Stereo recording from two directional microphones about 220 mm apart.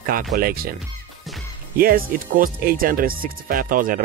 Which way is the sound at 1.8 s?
40° right (ahead or behind).